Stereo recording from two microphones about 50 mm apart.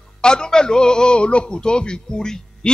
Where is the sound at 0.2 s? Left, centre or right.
Centre.